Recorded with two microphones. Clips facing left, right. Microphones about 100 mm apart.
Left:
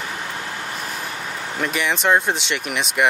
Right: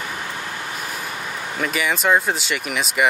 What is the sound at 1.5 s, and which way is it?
Speech, centre (ahead or behind).